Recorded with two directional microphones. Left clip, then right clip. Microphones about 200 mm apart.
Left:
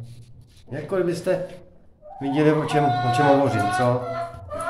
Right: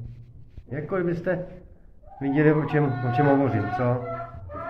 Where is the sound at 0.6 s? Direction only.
15° left (ahead or behind).